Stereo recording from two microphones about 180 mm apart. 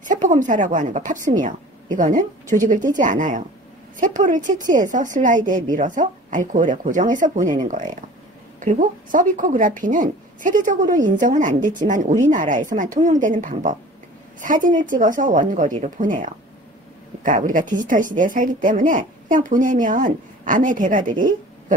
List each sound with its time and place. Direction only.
0.0 s speech: 45° right (ahead or behind)
8.5 s speech: 45° right (ahead or behind)